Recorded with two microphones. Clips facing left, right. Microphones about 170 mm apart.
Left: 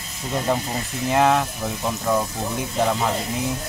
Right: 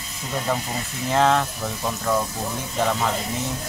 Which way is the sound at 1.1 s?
15° left (ahead or behind).